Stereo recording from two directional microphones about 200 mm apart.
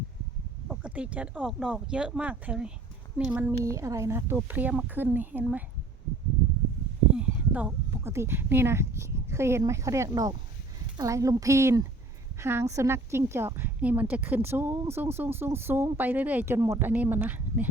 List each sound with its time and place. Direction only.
0.7 s speech: 5° right (ahead or behind)
7.2 s speech: 5° right (ahead or behind)